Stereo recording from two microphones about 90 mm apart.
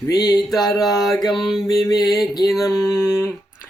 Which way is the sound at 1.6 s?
40° left (ahead or behind).